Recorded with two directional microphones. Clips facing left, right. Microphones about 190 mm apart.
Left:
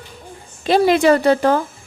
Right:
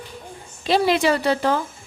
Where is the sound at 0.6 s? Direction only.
50° left (ahead or behind).